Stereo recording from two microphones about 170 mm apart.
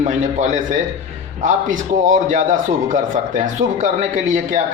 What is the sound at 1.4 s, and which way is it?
Speech, 45° right (ahead or behind).